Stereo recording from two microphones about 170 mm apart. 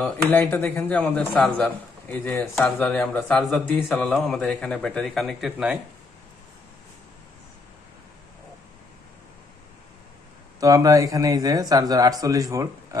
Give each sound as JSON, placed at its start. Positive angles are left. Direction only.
{"t": 0.3, "sound": "a man's voice", "side_deg": 10}
{"t": 10.6, "sound": "speech", "side_deg": -20}